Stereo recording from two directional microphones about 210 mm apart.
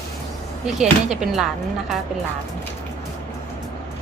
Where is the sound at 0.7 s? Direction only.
Centre (ahead or behind).